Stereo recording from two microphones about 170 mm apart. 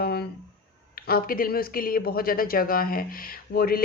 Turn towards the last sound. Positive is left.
turn(degrees=60)  # may be behind; listen again after turning